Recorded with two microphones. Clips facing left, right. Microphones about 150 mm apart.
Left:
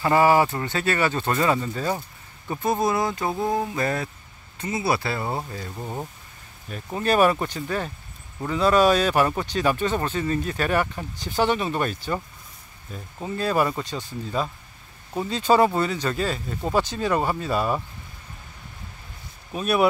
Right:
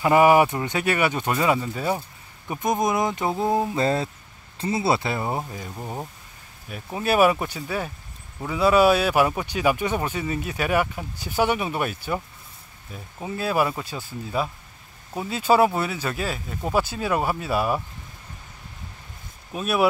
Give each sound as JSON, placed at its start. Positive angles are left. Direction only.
{"t": 0.0, "sound": "speech", "side_deg": -15}
{"t": 5.8, "sound": "speech", "side_deg": -5}
{"t": 19.5, "sound": "speech", "side_deg": 0}